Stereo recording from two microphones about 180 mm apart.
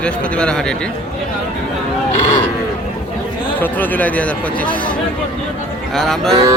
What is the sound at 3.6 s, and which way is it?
Speech, 10° left (ahead or behind).